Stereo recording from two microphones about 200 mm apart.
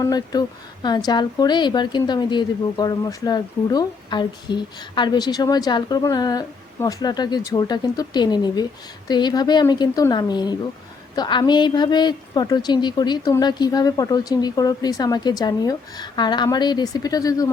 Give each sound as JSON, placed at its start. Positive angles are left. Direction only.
{"t": 0.0, "sound": "speech", "side_deg": 20}